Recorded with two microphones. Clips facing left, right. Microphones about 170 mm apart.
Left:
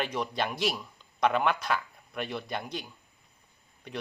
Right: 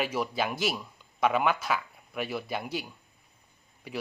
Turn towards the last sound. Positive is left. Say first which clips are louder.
# right 2 dB
turn(degrees=-5)  # may be behind; listen again after turning